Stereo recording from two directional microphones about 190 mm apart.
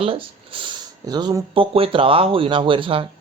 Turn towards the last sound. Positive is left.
turn(degrees=-30)  # may be behind; listen again after turning